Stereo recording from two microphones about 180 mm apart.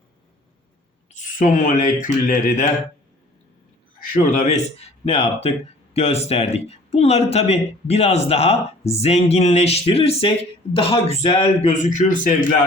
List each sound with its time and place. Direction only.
1.1 s speech: 50° left (ahead or behind)
4.1 s speech: 45° left (ahead or behind)